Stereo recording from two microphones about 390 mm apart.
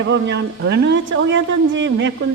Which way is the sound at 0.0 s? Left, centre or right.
Right.